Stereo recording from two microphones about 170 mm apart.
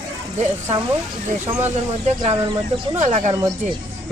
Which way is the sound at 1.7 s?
40° right (ahead or behind).